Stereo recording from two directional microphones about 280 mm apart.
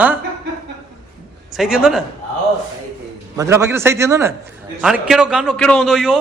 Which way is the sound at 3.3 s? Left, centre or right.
Centre.